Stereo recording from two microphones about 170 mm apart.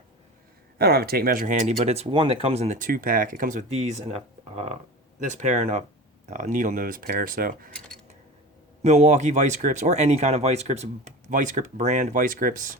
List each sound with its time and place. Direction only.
0.8 s speech: 65° right (ahead or behind)
8.8 s speech: 40° right (ahead or behind)